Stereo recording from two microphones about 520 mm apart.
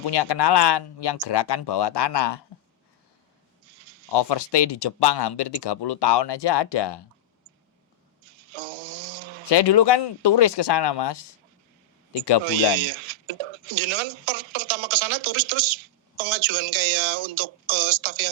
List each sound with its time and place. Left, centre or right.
0.1 s speech: left
3.8 s a sound: right
4.1 s speech: left
8.2 s a sound: right
9.5 s speech: left
12.5 s speech: right